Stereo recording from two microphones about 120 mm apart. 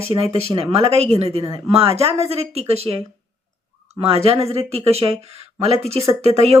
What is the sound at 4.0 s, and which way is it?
Speech, 50° right (ahead or behind).